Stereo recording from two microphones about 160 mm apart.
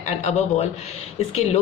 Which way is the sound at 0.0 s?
45° left (ahead or behind).